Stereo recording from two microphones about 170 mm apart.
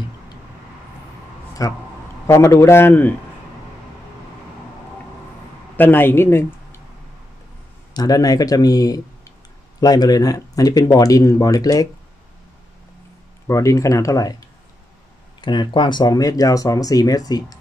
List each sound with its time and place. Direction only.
1.6 s a man's voice: 20° left (ahead or behind)
5.8 s speech: 10° left (ahead or behind)
7.9 s speech: 20° left (ahead or behind)
13.5 s speech: 15° left (ahead or behind)
15.4 s speech: 25° left (ahead or behind)